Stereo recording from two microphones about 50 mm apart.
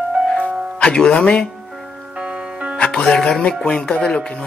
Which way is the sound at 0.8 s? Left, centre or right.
Centre.